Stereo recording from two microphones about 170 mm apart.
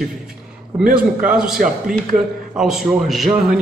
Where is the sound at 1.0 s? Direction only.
5° right (ahead or behind).